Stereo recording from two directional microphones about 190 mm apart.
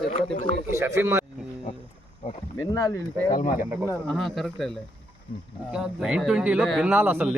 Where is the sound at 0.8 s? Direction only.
15° right (ahead or behind).